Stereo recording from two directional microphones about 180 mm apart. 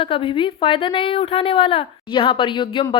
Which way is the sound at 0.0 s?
30° left (ahead or behind).